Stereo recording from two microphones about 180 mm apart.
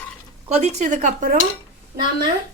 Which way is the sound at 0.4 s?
40° right (ahead or behind).